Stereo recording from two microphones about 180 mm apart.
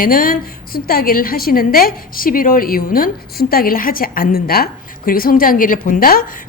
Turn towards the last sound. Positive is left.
turn(degrees=55)  # may be behind; listen again after turning